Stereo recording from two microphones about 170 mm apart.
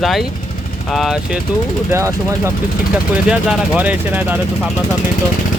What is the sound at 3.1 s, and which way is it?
Speech, 5° right (ahead or behind).